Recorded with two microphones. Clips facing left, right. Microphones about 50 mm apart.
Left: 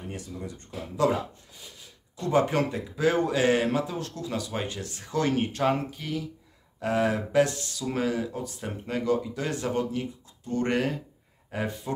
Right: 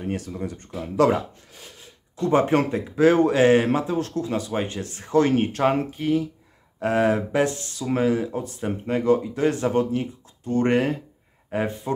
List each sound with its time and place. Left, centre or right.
0.0 s speech: right
1.8 s speech: right
7.2 s speech: right